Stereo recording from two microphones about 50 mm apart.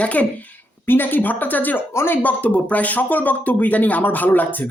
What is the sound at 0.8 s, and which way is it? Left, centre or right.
Speech, left.